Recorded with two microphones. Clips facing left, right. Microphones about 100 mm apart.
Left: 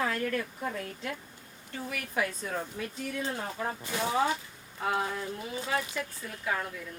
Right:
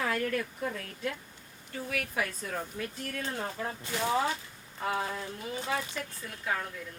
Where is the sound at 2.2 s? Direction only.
25° left (ahead or behind).